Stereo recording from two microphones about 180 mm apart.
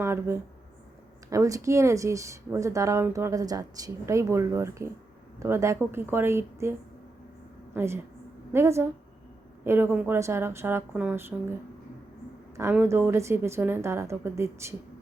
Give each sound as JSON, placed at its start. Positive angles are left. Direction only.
{"t": 0.0, "sound": "a woman's voice", "side_deg": -15}
{"t": 12.5, "sound": "speech", "side_deg": -15}